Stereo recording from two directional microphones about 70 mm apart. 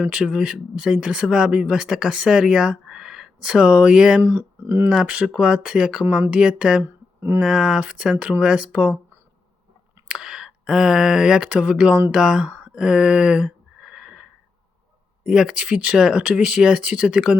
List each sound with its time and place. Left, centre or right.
0.1 s speech: centre
4.2 s speech: right
4.9 s speech: centre
6.8 s a sound: right
7.4 s speech: centre
10.1 s speech: centre
12.5 s a sound: centre
15.3 s speech: centre